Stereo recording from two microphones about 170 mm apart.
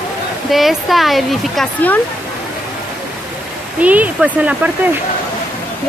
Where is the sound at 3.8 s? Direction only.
10° right (ahead or behind).